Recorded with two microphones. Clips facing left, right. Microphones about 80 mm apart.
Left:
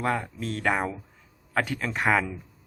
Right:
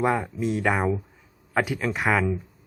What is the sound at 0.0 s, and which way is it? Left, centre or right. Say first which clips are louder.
Speech: right 4 dB; centre.